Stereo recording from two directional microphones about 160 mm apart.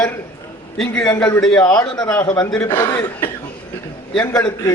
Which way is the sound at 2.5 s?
15° left (ahead or behind).